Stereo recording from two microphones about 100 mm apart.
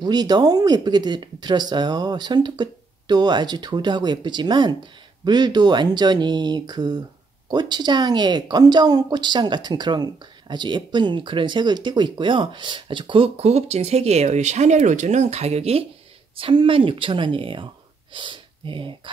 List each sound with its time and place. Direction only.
0.0 s speech: 45° right (ahead or behind); by 15.8 s 90° right
16.3 s speech: 60° right (ahead or behind)